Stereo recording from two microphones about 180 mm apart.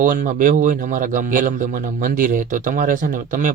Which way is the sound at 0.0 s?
45° right (ahead or behind).